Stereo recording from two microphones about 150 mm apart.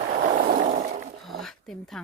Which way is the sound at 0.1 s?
60° right (ahead or behind).